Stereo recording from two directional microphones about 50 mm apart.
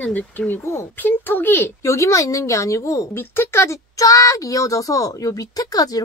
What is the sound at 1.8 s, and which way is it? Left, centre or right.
A woman's voice, left.